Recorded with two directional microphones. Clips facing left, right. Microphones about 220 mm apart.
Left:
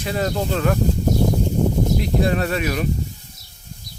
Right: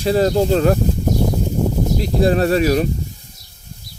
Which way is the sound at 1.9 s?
35° right (ahead or behind).